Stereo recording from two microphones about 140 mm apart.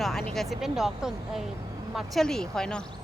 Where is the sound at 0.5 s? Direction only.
5° right (ahead or behind).